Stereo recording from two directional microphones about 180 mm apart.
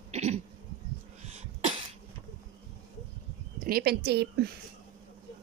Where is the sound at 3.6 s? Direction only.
55° right (ahead or behind).